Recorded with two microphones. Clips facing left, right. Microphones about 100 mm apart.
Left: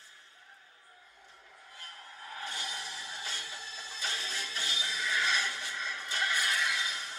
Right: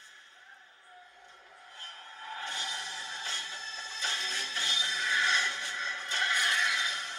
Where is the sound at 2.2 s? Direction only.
25° right (ahead or behind).